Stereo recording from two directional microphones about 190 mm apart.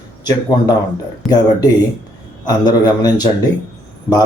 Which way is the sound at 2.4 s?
20° left (ahead or behind).